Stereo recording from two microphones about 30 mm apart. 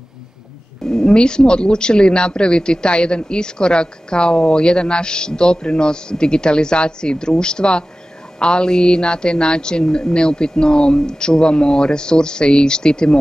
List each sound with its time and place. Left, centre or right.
1.0 s a man's voice: left